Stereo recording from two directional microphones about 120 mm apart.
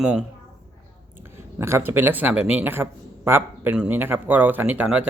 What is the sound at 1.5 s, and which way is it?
Speech, 20° right (ahead or behind).